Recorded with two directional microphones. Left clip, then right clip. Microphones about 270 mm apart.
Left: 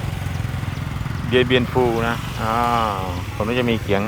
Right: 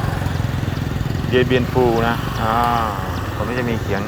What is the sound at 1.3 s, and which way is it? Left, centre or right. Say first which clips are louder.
Speech: even; centre.